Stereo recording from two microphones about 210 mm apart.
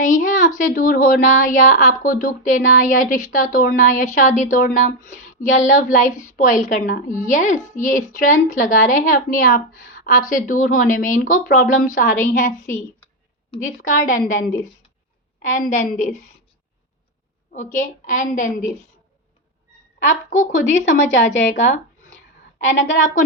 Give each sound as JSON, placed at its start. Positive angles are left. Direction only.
{"t": 0.0, "sound": "a woman's voice", "side_deg": 40}
{"t": 13.6, "sound": "a woman's voice", "side_deg": 40}
{"t": 17.5, "sound": "a woman's voice", "side_deg": 35}
{"t": 20.1, "sound": "a woman's voice", "side_deg": 35}